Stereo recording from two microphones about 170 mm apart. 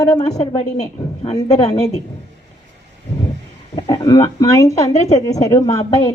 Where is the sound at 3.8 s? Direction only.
25° left (ahead or behind).